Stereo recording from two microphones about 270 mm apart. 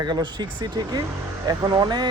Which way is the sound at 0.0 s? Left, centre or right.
Centre.